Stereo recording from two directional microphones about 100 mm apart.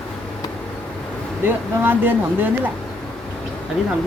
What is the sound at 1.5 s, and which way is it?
Speech, 20° right (ahead or behind).